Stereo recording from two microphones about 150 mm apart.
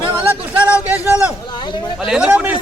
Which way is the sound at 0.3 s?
10° right (ahead or behind).